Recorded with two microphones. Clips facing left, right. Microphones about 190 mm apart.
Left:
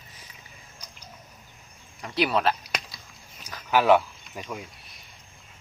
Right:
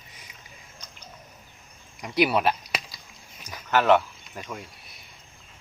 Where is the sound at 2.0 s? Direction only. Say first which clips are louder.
Right 2 dB; 15° right (ahead or behind).